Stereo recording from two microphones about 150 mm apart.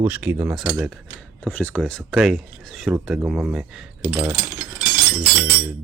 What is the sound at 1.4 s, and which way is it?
Speech, 10° left (ahead or behind).